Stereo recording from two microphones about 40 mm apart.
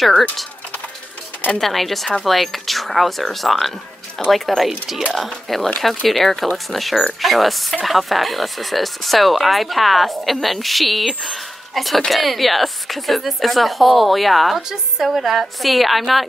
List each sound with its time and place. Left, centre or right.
1.6 s speech: centre
14.7 s speech: centre